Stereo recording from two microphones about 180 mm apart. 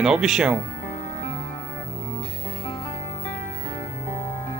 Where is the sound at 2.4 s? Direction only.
35° left (ahead or behind).